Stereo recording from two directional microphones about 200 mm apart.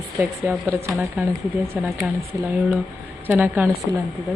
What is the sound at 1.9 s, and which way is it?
Speech, centre (ahead or behind).